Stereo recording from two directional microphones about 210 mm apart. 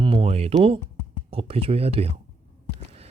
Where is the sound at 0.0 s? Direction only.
25° right (ahead or behind).